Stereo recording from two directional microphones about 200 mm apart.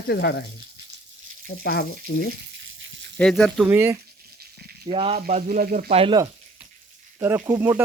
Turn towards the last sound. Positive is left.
turn(degrees=-10)  # may be behind; listen again after turning